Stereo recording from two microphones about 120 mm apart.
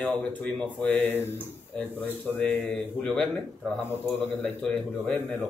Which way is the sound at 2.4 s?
10° left (ahead or behind).